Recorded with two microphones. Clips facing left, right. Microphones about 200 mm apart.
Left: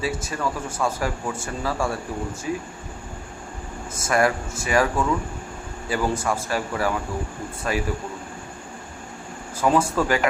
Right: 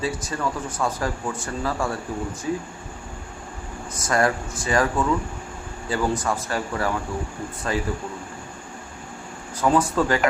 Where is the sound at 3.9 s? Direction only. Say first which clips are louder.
Left 1 dB; 25° left (ahead or behind).